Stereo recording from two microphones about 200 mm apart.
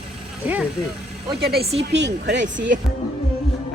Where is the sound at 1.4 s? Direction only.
50° right (ahead or behind).